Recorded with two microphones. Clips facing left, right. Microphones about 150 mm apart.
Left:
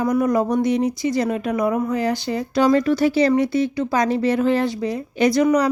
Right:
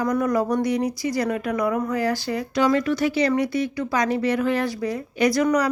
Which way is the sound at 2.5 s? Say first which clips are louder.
Left 4 dB; 35° left (ahead or behind).